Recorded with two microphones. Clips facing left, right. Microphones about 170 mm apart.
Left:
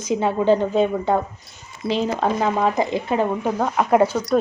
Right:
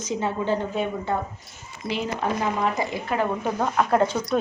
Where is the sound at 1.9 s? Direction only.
25° left (ahead or behind).